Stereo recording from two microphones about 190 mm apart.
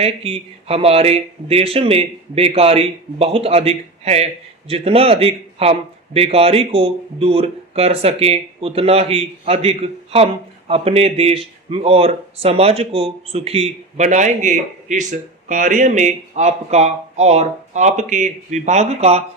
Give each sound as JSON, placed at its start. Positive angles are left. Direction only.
{"t": 0.0, "sound": "speech", "side_deg": -30}